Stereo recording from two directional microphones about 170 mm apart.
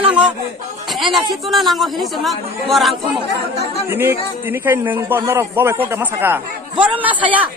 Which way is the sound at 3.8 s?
15° right (ahead or behind).